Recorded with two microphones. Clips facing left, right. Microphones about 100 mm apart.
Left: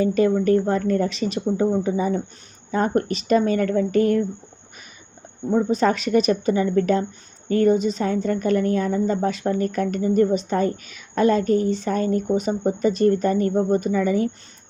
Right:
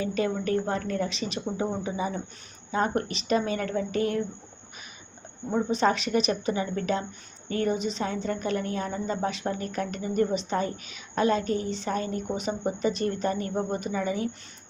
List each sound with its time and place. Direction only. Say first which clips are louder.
0.0 s a woman's voice: left 9 dB; 40° left (ahead or behind)
5.7 s a woman's voice: left 3 dB; 45° left (ahead or behind)